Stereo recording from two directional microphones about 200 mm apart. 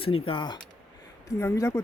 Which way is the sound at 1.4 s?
15° left (ahead or behind).